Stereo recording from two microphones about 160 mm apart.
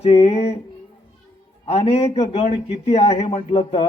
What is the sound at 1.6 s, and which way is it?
Speech, 40° left (ahead or behind).